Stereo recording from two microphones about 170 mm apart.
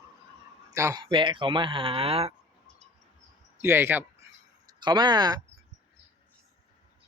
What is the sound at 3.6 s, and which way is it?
Speech, 15° right (ahead or behind).